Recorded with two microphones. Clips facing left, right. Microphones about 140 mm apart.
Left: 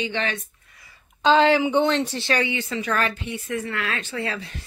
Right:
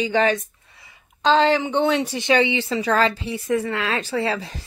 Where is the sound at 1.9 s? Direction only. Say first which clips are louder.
Right 3 dB; 10° right (ahead or behind).